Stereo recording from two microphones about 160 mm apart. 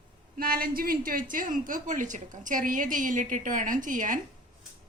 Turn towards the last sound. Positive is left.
turn(degrees=-55)  # may be behind; listen again after turning